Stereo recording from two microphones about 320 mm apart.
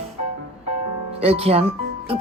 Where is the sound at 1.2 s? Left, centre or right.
Centre.